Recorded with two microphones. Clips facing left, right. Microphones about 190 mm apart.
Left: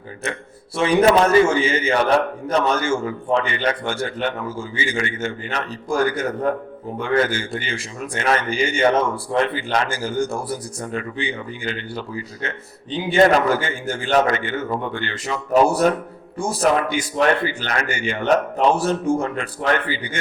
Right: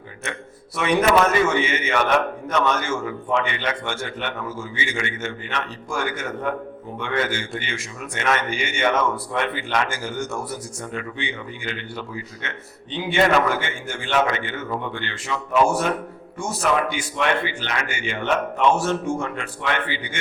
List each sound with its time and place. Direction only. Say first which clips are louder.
0.8 s a man's voice: left 3 dB; 30° left (ahead or behind)